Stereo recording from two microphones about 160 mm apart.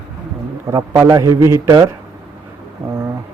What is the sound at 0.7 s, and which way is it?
A man's voice, 20° right (ahead or behind).